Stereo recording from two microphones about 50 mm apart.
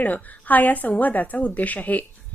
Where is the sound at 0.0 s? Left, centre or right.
Left.